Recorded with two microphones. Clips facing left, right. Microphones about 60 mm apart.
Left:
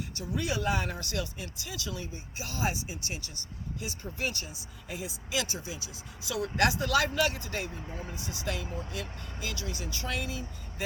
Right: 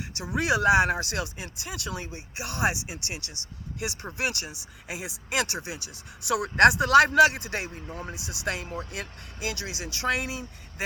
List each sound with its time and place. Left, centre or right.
0.2 s speech: right